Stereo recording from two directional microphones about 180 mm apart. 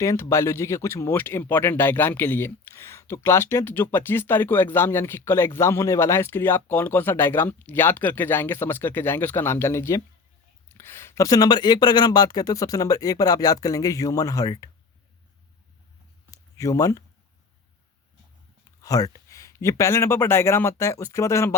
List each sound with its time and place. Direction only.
0.0 s speech: 15° left (ahead or behind)
16.3 s a sound: 20° left (ahead or behind)
18.8 s speech: 20° left (ahead or behind)